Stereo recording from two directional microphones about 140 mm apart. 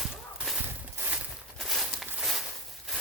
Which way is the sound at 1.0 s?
15° right (ahead or behind).